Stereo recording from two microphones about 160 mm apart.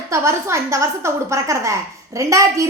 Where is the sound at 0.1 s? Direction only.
15° right (ahead or behind).